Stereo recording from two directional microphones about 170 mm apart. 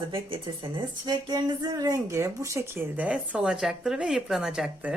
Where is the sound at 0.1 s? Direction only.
30° right (ahead or behind).